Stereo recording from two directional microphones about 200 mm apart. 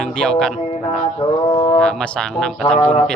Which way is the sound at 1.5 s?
25° left (ahead or behind).